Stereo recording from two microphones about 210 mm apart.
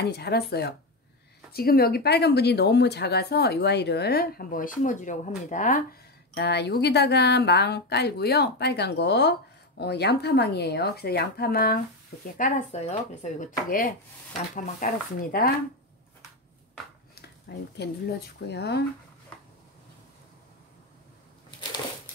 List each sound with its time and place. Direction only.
0.0 s speech: 50° left (ahead or behind)
6.3 s speech: 55° left (ahead or behind)
12.4 s speech: 35° left (ahead or behind)
17.1 s a sound: 50° left (ahead or behind)
18.5 s speech: 50° left (ahead or behind)
21.5 s a sound: 20° left (ahead or behind)